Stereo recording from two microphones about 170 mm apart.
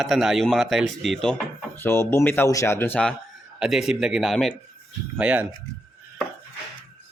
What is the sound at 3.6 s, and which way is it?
Speech, centre (ahead or behind).